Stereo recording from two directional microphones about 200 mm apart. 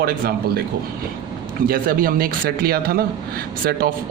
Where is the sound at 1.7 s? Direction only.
45° right (ahead or behind).